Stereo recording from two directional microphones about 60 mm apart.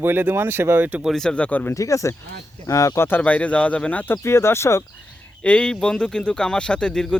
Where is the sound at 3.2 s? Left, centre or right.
Left.